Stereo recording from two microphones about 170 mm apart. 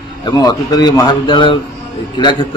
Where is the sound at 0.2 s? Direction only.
25° left (ahead or behind).